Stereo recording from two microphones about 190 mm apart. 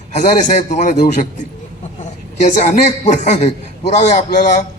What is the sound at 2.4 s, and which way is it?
A woman's voice, 40° left (ahead or behind).